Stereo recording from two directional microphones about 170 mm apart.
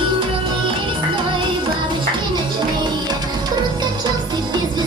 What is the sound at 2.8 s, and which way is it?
Music, 25° right (ahead or behind).